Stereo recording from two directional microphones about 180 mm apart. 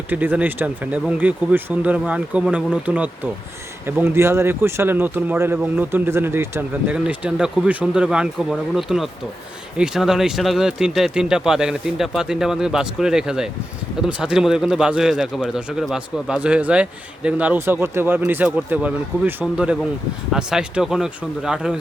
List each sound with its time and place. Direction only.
0.1 s speech: 10° right (ahead or behind)